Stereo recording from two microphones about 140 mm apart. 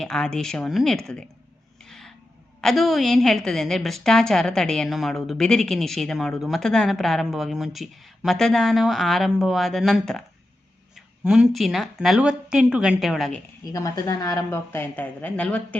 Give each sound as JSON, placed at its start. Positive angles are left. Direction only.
{"t": 0.0, "sound": "a woman's voice", "side_deg": 5}
{"t": 1.8, "sound": "a sound", "side_deg": 5}
{"t": 2.6, "sound": "a woman's voice", "side_deg": 0}
{"t": 13.7, "sound": "speech", "side_deg": 25}